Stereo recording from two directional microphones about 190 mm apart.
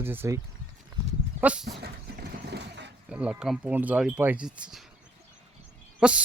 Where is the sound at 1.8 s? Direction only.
55° right (ahead or behind).